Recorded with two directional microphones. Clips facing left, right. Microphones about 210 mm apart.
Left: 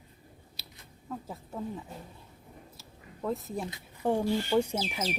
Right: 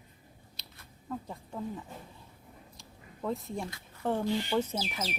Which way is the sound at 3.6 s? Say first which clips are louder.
Left 3 dB; 15° left (ahead or behind).